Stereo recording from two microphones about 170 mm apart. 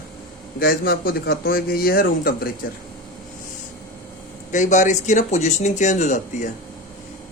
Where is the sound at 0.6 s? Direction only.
65° left (ahead or behind).